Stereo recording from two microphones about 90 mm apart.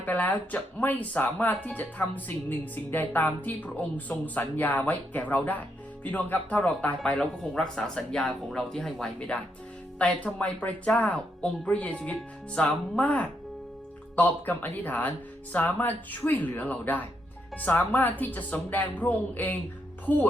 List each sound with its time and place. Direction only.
0.0 s speech: 20° left (ahead or behind)